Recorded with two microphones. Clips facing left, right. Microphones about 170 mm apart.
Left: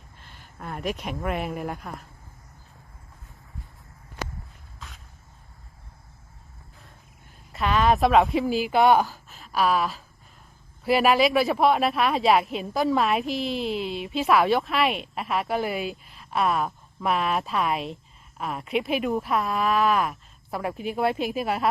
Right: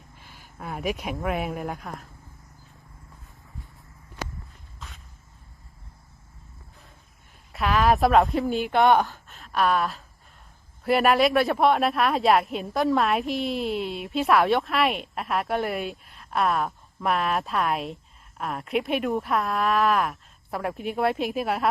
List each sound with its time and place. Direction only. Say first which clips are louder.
0.2 s speech: right 1 dB; 5° right (ahead or behind)
7.5 s speech: even; centre (ahead or behind)